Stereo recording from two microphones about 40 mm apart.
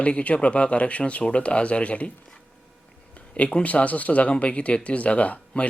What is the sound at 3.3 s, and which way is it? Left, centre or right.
Speech, left.